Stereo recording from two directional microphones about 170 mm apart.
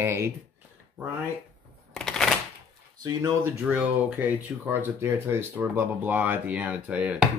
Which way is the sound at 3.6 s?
10° right (ahead or behind).